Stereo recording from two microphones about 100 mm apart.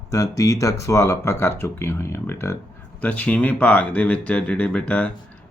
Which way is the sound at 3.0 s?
15° left (ahead or behind).